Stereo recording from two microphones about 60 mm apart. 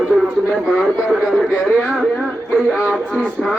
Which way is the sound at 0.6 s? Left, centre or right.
Centre.